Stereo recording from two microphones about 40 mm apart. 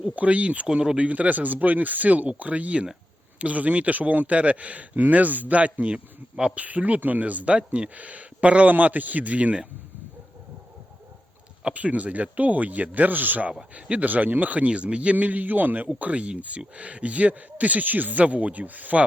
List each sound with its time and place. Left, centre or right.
0.0 s speech: right
11.7 s speech: right
13.7 s speech: right
15.1 s a man's voice: right
16.0 s speech: right